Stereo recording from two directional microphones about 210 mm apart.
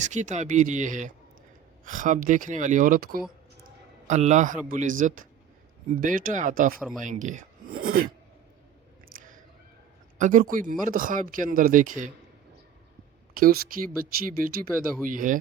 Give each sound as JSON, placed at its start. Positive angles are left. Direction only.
{"t": 0.0, "sound": "speech", "side_deg": -35}
{"t": 6.7, "sound": "speech", "side_deg": -5}
{"t": 7.0, "sound": "speech", "side_deg": -35}
{"t": 10.2, "sound": "speech", "side_deg": -40}
{"t": 13.3, "sound": "speech", "side_deg": -45}